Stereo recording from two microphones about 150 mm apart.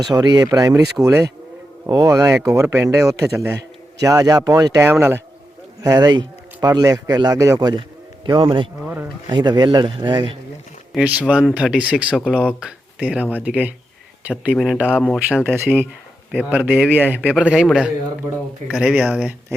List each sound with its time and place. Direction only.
0.0 s a man's voice: 30° right (ahead or behind)
10.9 s a man's voice: 10° right (ahead or behind)
15.4 s a man's voice: 15° right (ahead or behind)